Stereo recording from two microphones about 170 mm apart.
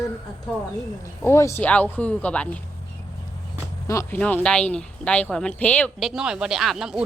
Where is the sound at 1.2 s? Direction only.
15° left (ahead or behind).